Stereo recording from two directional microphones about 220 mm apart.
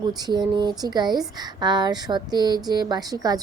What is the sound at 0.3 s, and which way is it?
A woman's voice, 20° right (ahead or behind).